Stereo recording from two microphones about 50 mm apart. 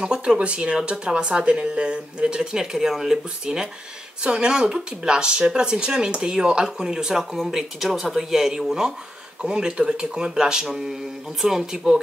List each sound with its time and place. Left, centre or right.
0.0 s speech: centre